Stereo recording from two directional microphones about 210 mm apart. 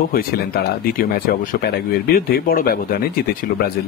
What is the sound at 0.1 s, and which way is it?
Speech, 45° left (ahead or behind).